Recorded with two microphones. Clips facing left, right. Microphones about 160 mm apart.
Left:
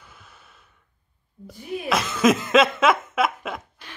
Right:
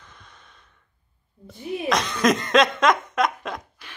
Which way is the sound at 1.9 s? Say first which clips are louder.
Left 1 dB; 5° left (ahead or behind).